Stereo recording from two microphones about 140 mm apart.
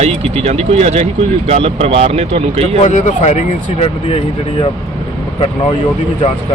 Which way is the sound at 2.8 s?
55° left (ahead or behind).